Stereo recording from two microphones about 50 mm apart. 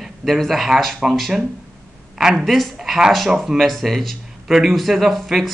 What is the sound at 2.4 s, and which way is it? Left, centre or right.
A man's voice, centre.